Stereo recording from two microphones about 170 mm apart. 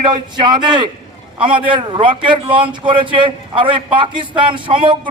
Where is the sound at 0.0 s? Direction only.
25° right (ahead or behind).